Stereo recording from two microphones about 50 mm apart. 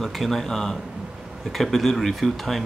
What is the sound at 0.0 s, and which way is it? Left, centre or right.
Speech, centre.